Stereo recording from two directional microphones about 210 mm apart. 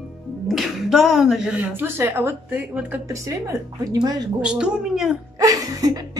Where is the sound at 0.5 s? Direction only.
Centre (ahead or behind); by 4.2 s 15° right (ahead or behind).